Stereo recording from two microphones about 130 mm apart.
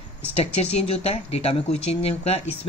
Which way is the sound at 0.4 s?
50° left (ahead or behind).